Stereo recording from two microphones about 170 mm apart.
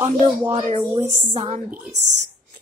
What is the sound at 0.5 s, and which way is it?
A woman's voice, 40° right (ahead or behind).